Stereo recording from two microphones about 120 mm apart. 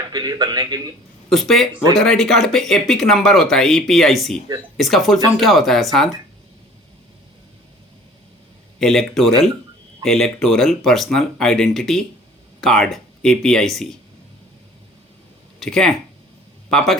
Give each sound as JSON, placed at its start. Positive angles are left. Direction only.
{"t": 0.1, "sound": "a man's voice", "side_deg": -35}
{"t": 1.3, "sound": "speech", "side_deg": 5}
{"t": 8.8, "sound": "speech", "side_deg": 5}
{"t": 15.6, "sound": "speech", "side_deg": 5}